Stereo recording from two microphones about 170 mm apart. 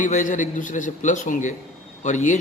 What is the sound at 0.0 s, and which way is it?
A man's voice, 45° left (ahead or behind).